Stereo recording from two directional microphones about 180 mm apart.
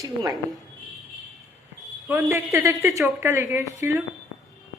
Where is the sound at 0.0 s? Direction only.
20° right (ahead or behind).